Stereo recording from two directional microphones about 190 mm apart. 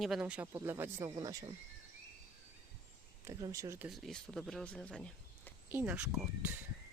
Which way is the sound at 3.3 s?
15° right (ahead or behind).